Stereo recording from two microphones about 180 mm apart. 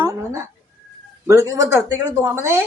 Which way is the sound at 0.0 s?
15° right (ahead or behind).